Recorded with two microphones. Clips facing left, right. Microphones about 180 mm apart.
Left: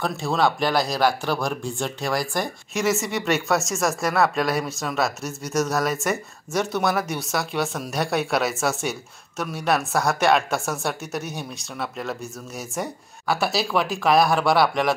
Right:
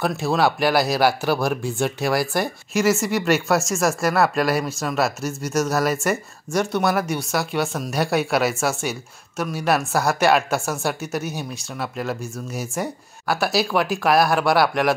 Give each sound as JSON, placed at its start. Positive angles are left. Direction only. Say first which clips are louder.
{"t": 0.0, "sound": "speech", "louder": "right 2 dB", "side_deg": -5}